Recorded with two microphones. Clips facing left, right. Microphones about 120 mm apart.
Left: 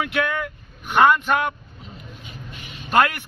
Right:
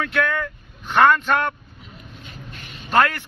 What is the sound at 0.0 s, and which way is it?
Vehicle, 15° left (ahead or behind).